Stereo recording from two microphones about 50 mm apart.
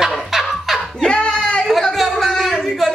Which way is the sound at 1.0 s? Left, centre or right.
Centre.